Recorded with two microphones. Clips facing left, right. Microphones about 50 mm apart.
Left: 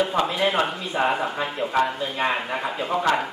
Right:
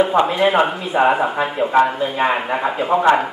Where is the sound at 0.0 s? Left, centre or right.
Centre.